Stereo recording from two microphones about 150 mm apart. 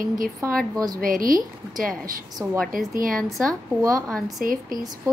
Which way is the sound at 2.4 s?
15° right (ahead or behind).